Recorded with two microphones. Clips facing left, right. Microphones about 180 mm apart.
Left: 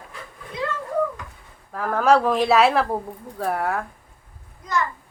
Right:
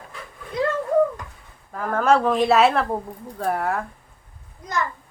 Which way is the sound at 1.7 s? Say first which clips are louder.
Left 1 dB; centre (ahead or behind).